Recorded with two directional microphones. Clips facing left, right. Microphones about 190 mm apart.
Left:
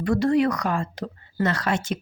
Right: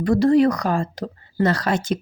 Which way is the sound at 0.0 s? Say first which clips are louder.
Right 5 dB; 35° right (ahead or behind).